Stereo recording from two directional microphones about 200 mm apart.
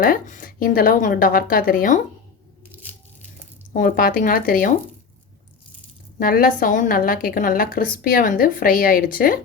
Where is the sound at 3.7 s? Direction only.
40° left (ahead or behind).